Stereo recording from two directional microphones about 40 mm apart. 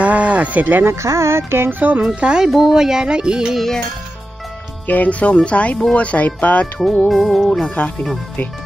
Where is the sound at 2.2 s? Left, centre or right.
Centre.